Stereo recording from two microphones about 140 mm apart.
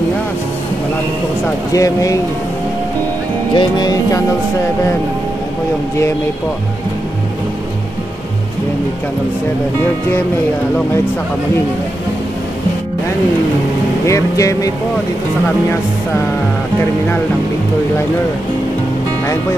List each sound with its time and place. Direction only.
1.7 s speech: 25° left (ahead or behind)
3.5 s speech: 30° left (ahead or behind)
14.0 s speech: 25° left (ahead or behind)